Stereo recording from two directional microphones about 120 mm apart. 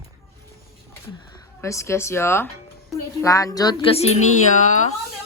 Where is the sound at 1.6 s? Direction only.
25° left (ahead or behind).